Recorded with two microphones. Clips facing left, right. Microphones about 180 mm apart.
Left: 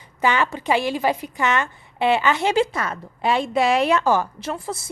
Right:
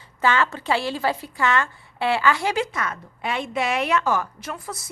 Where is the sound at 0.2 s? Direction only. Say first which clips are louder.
Left 1 dB; 15° left (ahead or behind).